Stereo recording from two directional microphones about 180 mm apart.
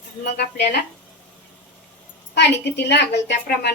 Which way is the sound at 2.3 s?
70° left (ahead or behind).